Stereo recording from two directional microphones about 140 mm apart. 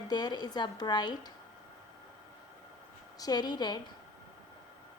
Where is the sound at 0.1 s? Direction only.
30° left (ahead or behind).